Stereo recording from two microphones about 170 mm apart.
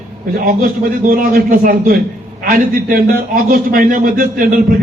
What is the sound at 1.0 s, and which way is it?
A man's voice, 60° right (ahead or behind).